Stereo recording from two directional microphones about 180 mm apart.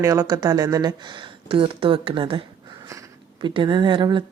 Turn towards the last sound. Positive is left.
turn(degrees=-25)  # may be behind; listen again after turning